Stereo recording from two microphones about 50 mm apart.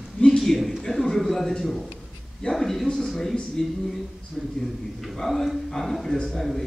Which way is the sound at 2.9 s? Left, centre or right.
Centre.